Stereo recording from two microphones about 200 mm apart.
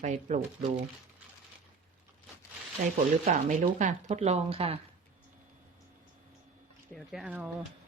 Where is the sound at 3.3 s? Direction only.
35° right (ahead or behind).